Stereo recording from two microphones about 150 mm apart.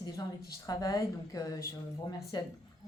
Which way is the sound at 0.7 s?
25° left (ahead or behind).